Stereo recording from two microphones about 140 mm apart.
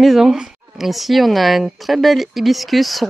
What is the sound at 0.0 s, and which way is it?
Speech, centre (ahead or behind).